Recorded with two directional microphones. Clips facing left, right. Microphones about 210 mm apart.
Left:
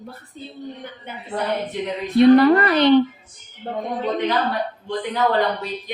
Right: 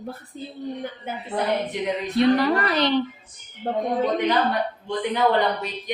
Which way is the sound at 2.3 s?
60° left (ahead or behind).